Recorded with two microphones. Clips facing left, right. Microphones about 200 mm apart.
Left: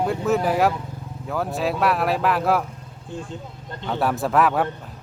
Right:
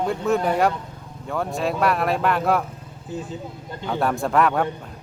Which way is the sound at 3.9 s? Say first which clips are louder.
Even; 5° left (ahead or behind).